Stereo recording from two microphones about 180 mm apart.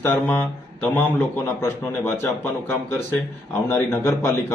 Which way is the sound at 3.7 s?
15° left (ahead or behind).